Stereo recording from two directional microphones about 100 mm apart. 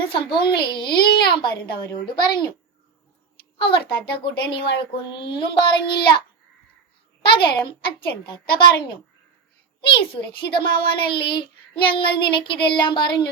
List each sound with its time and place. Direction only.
0.1 s a child's voice: 55° left (ahead or behind)
3.6 s a child's voice: 60° left (ahead or behind)